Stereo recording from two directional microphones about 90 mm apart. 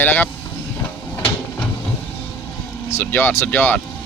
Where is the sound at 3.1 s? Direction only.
20° left (ahead or behind).